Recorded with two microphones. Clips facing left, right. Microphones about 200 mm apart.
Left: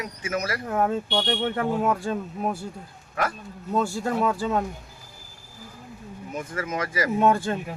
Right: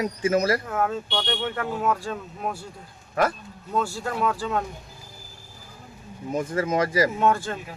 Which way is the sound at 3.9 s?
25° left (ahead or behind).